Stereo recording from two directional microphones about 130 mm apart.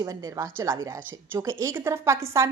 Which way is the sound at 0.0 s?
25° right (ahead or behind).